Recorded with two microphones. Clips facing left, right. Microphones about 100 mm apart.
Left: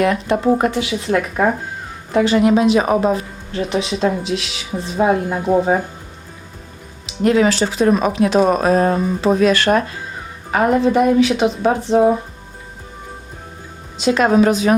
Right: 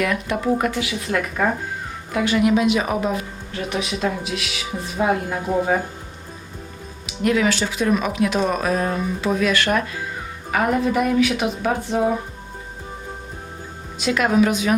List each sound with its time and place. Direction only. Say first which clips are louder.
0.0 s a woman's voice: left 6 dB; 30° left (ahead or behind)
2.1 s a woman's voice: left 5 dB; 30° left (ahead or behind)
7.2 s a woman's voice: left 5 dB; 35° left (ahead or behind)
14.0 s speech: left 5 dB; 30° left (ahead or behind)